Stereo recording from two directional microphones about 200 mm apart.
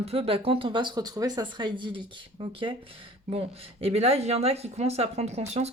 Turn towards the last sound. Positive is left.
turn(degrees=-30)  # may be behind; listen again after turning